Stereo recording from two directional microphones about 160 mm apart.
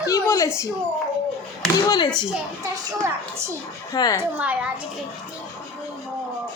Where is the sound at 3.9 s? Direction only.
25° left (ahead or behind).